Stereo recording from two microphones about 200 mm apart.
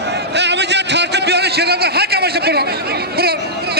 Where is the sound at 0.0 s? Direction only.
60° right (ahead or behind).